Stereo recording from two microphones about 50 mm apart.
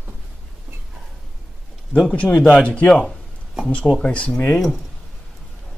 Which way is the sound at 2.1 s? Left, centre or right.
Left.